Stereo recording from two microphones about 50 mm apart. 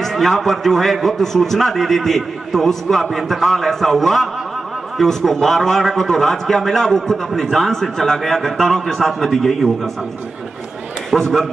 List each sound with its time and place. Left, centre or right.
0.0 s a man's voice: centre
11.1 s a man's voice: centre